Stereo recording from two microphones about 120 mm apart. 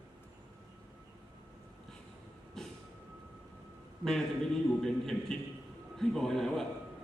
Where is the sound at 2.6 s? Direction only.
Centre (ahead or behind).